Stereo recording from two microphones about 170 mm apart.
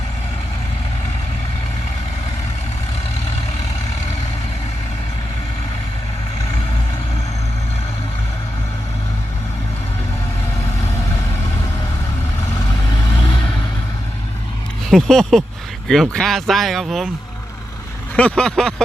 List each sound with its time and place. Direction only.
12.9 s vehicle: 30° left (ahead or behind)
14.8 s speech: centre (ahead or behind)
18.2 s speech: 5° left (ahead or behind)